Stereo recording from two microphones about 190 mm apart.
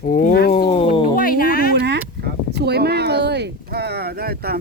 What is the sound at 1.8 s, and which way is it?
Speech, 60° right (ahead or behind).